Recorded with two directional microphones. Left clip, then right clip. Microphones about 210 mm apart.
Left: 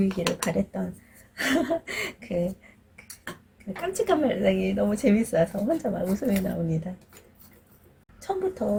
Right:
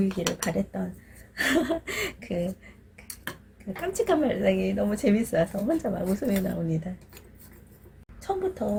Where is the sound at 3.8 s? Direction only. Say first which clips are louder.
Left 1 dB; 15° right (ahead or behind).